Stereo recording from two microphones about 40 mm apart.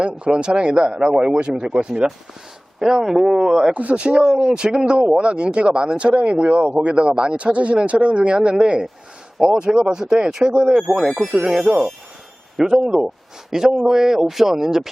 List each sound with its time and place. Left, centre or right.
0.3 s speech: right
2.7 s speech: centre
3.7 s speech: right
3.9 s speech: right
7.3 s speech: right; by 14.8 s centre